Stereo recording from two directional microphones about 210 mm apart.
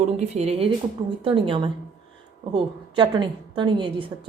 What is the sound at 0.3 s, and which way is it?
A woman's voice, 30° right (ahead or behind).